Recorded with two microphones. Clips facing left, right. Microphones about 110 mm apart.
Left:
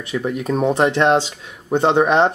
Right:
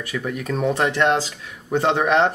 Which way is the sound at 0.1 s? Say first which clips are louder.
Left 5 dB; 20° left (ahead or behind).